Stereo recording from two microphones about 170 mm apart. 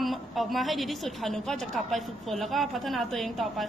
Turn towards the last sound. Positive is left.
turn(degrees=0)  # may be behind; listen again after turning